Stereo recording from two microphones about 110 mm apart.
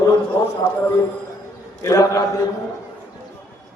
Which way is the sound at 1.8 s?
30° left (ahead or behind).